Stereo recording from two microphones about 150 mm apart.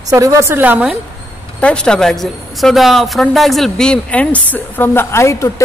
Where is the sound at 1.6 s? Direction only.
5° left (ahead or behind).